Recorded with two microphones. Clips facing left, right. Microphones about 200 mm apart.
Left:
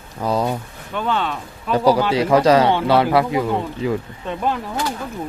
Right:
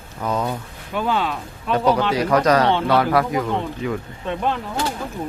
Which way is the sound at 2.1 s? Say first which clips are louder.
Left 3 dB; 25° left (ahead or behind).